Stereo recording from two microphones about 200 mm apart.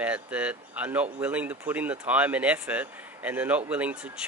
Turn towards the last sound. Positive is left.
turn(degrees=-5)  # may be behind; listen again after turning